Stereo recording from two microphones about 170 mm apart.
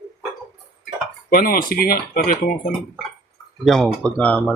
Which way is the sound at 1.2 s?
60° left (ahead or behind).